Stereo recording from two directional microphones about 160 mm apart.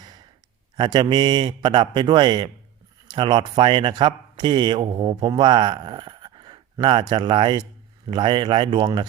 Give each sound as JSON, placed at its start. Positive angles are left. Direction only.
{"t": 0.0, "sound": "gasp", "side_deg": -25}
{"t": 0.8, "sound": "speech", "side_deg": -30}